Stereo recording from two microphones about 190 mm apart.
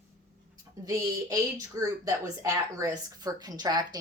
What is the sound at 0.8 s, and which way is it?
A woman's voice, 15° right (ahead or behind).